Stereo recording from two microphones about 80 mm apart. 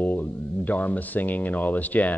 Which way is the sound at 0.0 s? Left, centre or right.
Left.